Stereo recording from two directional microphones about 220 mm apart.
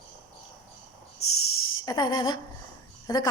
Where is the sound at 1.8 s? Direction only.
20° left (ahead or behind).